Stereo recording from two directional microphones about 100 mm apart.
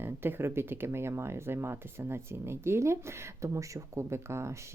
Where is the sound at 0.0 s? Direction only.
25° right (ahead or behind).